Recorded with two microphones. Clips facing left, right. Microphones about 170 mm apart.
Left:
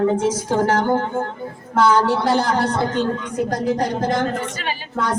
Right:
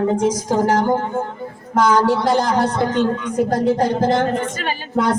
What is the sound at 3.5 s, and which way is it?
Speech, 25° right (ahead or behind).